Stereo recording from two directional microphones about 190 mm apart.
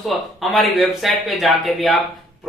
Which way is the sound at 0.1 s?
Centre (ahead or behind).